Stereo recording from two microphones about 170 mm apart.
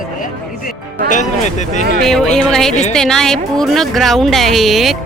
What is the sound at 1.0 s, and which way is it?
Speech, 45° left (ahead or behind).